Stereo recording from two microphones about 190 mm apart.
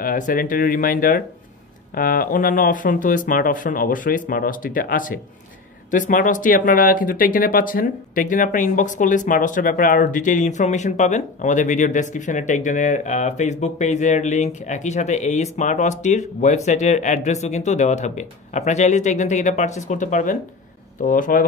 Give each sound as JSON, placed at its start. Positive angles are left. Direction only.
{"t": 0.0, "sound": "speech", "side_deg": 45}